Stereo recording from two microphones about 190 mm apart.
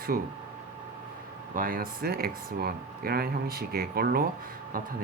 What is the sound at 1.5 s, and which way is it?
Speech, 50° right (ahead or behind).